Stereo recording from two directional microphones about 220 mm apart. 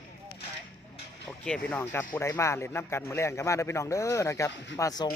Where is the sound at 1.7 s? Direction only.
10° left (ahead or behind).